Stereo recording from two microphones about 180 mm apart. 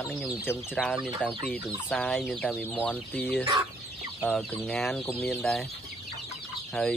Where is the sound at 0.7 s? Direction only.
Centre (ahead or behind).